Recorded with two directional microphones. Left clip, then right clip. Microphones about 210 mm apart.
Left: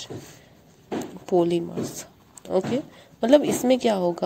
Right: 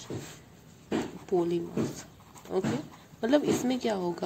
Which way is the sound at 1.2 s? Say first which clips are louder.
Left 8 dB; 35° left (ahead or behind).